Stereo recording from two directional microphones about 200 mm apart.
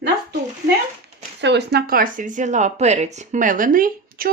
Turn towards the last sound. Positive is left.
turn(degrees=-45)  # may be behind; listen again after turning